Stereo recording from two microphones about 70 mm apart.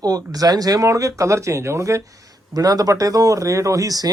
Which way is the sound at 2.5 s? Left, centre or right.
Right.